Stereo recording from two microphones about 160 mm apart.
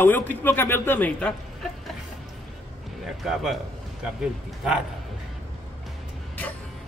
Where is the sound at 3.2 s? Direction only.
Centre (ahead or behind).